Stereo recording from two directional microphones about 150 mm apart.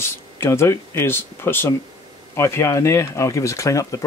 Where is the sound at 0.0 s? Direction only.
15° left (ahead or behind).